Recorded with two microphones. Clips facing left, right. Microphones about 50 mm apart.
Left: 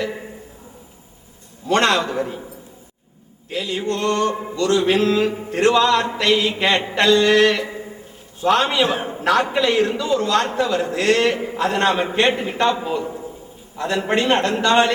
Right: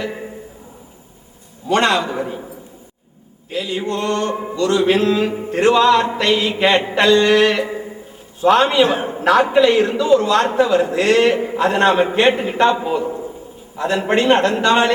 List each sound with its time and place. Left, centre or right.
1.6 s music: centre
3.5 s a man's voice: centre
5.5 s music: centre
8.4 s a man's voice: centre